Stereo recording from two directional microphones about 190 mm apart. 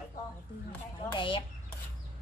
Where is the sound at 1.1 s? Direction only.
25° left (ahead or behind).